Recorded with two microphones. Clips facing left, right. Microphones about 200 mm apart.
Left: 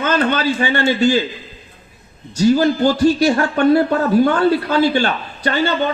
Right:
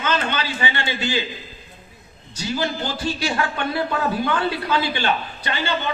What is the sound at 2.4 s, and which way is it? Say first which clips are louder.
Speech: left 12 dB; 50° left (ahead or behind).